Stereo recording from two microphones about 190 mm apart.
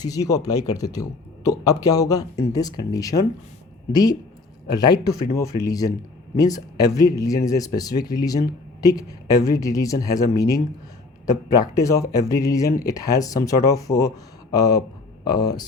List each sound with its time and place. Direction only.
0.0 s speech: 20° left (ahead or behind)